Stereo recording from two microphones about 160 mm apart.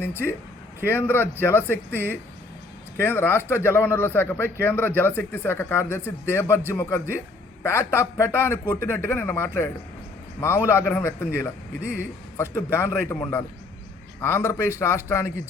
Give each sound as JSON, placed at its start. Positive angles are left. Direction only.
{"t": 0.0, "sound": "a man's voice", "side_deg": 15}